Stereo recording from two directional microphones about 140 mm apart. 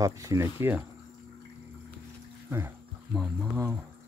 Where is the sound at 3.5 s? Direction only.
15° right (ahead or behind).